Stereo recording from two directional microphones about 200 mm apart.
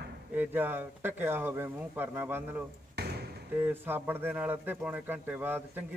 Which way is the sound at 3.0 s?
55° right (ahead or behind).